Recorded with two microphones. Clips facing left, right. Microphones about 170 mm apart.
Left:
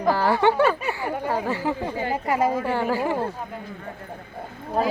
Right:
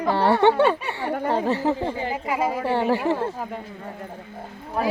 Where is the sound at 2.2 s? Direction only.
15° right (ahead or behind).